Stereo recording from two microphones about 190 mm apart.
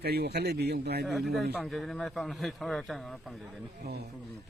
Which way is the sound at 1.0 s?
Centre (ahead or behind).